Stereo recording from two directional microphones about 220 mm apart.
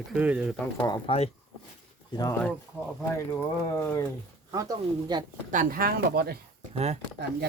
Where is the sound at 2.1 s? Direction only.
15° left (ahead or behind).